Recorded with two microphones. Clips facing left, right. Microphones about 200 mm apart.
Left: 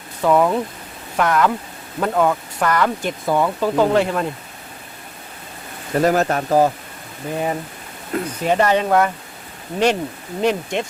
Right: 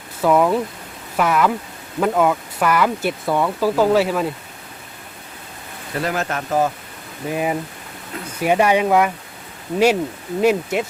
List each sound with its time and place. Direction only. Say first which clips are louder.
0.2 s speech: even; 5° right (ahead or behind)
6.0 s speech: left 6 dB; 40° left (ahead or behind)
7.3 s speech: right 1 dB; 10° right (ahead or behind)